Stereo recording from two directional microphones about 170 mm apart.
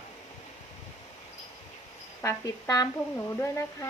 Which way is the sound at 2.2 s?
20° left (ahead or behind).